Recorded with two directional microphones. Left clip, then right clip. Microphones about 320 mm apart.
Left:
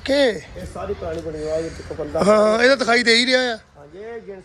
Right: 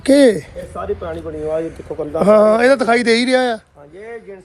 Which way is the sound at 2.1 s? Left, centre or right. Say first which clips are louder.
Right 4 dB; centre.